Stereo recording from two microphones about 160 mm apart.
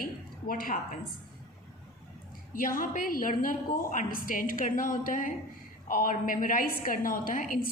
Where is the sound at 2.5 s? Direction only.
60° left (ahead or behind).